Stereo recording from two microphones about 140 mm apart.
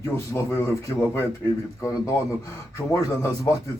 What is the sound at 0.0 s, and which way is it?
A man's voice, 20° left (ahead or behind).